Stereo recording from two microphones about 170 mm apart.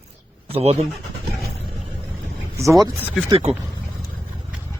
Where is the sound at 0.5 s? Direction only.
35° right (ahead or behind).